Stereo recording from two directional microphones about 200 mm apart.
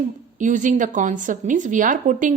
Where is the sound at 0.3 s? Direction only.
40° right (ahead or behind).